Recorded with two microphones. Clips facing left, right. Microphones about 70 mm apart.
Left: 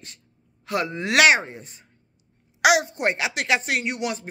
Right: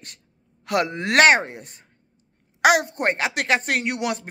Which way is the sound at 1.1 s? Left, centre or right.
Right.